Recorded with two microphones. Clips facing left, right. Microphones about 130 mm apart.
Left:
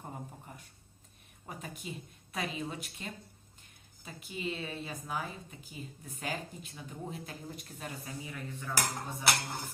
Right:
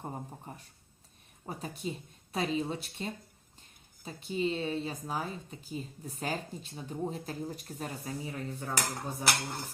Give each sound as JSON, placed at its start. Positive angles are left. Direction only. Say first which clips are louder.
{"t": 0.0, "sound": "a woman's voice", "louder": "right 4 dB", "side_deg": -30}